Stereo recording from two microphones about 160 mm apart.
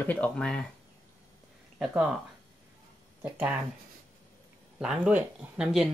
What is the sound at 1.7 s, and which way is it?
Speech, 5° right (ahead or behind).